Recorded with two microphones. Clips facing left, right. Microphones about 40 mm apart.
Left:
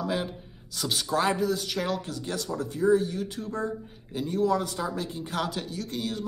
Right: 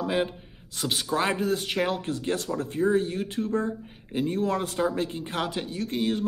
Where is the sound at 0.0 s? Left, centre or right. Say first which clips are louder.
Right 3 dB; right.